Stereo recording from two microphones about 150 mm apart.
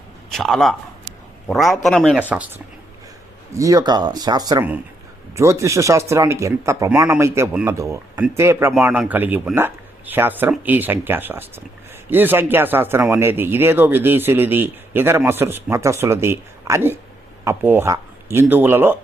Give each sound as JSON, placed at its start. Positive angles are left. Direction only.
{"t": 0.3, "sound": "a man's voice", "side_deg": 5}
{"t": 3.5, "sound": "speech", "side_deg": -20}